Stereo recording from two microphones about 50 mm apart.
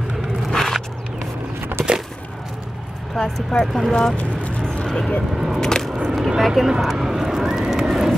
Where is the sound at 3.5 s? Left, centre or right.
Centre.